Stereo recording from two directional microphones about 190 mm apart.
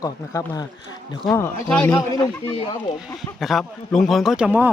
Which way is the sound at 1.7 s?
10° left (ahead or behind).